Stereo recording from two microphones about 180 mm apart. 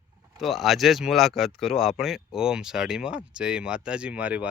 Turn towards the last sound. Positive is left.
turn(degrees=-5)  # may be behind; listen again after turning